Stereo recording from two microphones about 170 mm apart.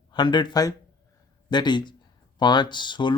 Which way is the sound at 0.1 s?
25° left (ahead or behind).